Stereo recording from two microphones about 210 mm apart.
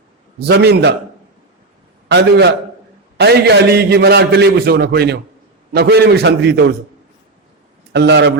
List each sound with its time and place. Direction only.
0.3 s a man's voice: 50° right (ahead or behind)
2.0 s a man's voice: 55° right (ahead or behind)
7.9 s a man's voice: 55° right (ahead or behind)